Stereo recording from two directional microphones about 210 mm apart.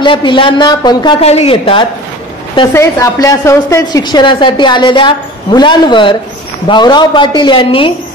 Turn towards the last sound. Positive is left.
turn(degrees=25)  # may be behind; listen again after turning